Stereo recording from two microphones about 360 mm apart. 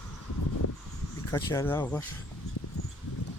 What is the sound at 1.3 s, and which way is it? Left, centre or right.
Speech, centre.